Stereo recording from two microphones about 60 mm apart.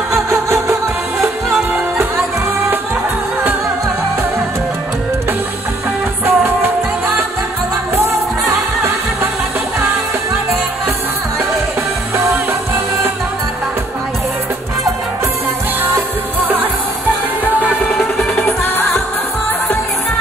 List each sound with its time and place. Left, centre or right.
0.1 s music: right
6.2 s music: right
7.9 s music: right
18.3 s music: left